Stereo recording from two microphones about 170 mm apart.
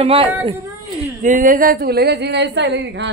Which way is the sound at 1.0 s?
50° right (ahead or behind).